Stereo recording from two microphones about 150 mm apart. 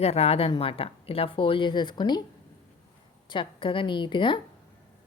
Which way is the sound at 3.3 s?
35° left (ahead or behind).